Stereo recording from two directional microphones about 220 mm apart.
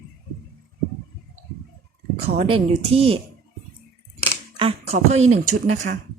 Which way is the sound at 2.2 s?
25° right (ahead or behind).